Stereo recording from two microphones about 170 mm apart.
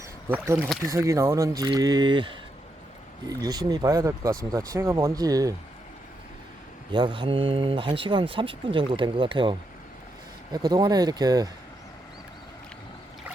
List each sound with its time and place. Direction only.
0.3 s speech: 15° right (ahead or behind)
3.2 s speech: 20° right (ahead or behind)
6.9 s speech: 30° right (ahead or behind)